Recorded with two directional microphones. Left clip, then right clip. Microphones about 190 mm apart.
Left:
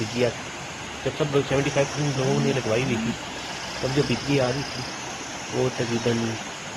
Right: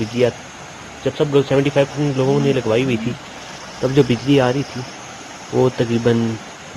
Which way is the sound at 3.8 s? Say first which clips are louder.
Right 8 dB; 35° right (ahead or behind).